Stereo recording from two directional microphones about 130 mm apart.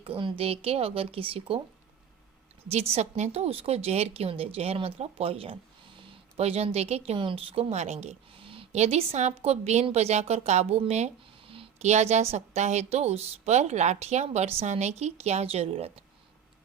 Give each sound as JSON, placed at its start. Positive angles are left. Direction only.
{"t": 0.0, "sound": "a woman's voice", "side_deg": -40}
{"t": 2.9, "sound": "a woman's voice", "side_deg": -60}
{"t": 8.7, "sound": "a woman's voice", "side_deg": -55}